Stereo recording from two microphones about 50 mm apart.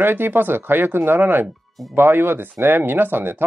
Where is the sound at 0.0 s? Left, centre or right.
Right.